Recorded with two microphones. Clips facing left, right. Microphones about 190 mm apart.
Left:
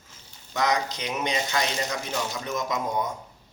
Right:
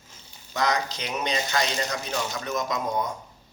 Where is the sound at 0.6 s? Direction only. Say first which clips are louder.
Left 1 dB; 20° left (ahead or behind).